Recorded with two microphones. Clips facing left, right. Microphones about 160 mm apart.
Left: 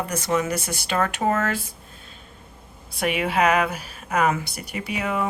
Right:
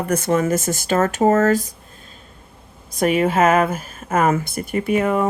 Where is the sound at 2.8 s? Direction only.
40° right (ahead or behind).